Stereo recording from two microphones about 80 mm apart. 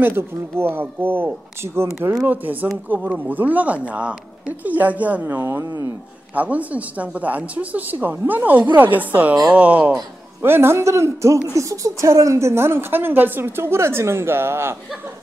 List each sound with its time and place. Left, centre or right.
0.0 s speech: right
5.6 s speech: right
6.3 s speech: centre
10.4 s a woman's voice: right